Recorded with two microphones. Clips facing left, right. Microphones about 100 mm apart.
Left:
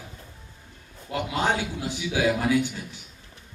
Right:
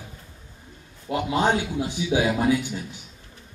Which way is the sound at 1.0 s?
15° right (ahead or behind).